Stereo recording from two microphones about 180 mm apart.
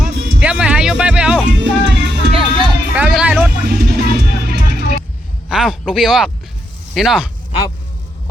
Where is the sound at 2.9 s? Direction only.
5° right (ahead or behind).